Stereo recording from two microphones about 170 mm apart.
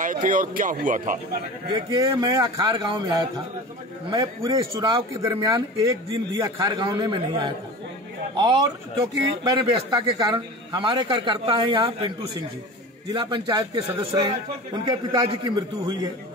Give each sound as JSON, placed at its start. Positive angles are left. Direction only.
{"t": 0.0, "sound": "speech", "side_deg": -50}
{"t": 1.9, "sound": "a man's voice", "side_deg": -25}